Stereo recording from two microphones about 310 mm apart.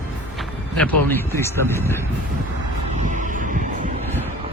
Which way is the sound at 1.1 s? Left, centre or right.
Centre.